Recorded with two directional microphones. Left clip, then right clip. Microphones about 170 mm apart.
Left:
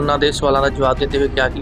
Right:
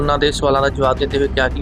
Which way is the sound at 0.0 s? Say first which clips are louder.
Even; centre (ahead or behind).